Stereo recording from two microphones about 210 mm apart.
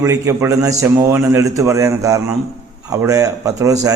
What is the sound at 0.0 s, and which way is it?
Speech, 15° right (ahead or behind).